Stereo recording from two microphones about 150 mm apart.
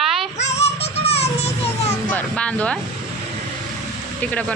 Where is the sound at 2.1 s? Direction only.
10° left (ahead or behind).